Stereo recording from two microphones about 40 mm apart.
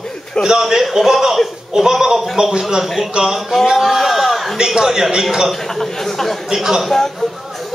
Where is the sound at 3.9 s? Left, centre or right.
Centre.